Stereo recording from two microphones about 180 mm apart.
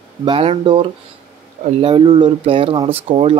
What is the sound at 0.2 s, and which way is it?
Speech, 30° right (ahead or behind).